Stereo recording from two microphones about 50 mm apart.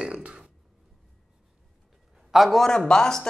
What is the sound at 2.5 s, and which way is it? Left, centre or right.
Speech, centre.